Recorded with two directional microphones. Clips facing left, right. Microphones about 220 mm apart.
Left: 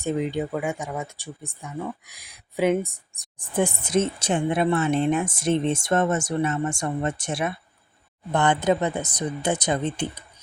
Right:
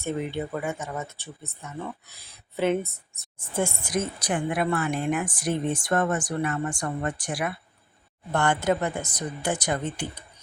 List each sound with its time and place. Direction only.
0.0 s speech: 15° left (ahead or behind)